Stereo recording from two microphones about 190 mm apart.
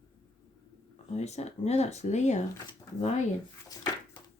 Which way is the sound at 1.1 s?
35° left (ahead or behind).